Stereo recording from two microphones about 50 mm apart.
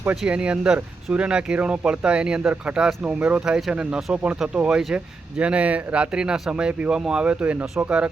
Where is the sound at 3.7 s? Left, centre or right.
Right.